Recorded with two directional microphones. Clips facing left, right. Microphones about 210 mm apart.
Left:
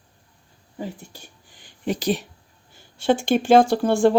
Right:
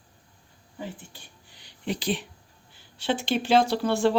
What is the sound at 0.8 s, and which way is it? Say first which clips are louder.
Speech: left 5 dB; 40° left (ahead or behind).